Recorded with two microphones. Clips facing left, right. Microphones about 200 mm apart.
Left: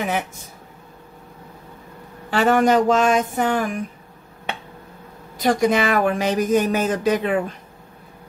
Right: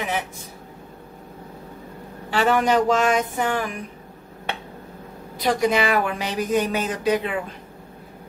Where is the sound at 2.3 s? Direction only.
45° left (ahead or behind).